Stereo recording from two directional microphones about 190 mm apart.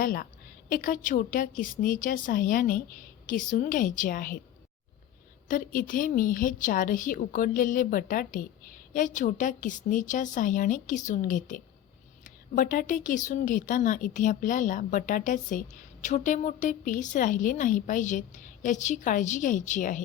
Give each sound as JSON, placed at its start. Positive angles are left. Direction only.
{"t": 0.0, "sound": "a woman's voice", "side_deg": 50}
{"t": 5.5, "sound": "a woman's voice", "side_deg": 45}